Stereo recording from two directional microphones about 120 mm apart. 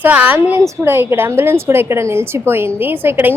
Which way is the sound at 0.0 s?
10° right (ahead or behind).